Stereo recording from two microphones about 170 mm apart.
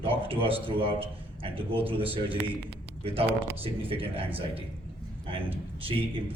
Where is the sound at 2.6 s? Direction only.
35° right (ahead or behind).